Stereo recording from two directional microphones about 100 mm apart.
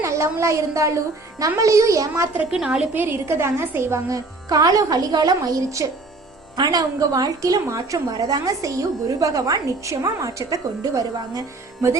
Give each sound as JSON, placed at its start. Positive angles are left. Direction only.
{"t": 0.0, "sound": "a woman's voice", "side_deg": -30}
{"t": 2.3, "sound": "a woman's voice", "side_deg": -15}